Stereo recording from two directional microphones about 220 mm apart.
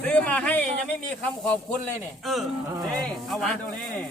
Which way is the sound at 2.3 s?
Centre (ahead or behind).